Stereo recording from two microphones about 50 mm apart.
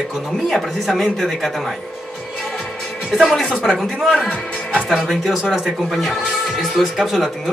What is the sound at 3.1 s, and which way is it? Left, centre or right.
Speech, centre.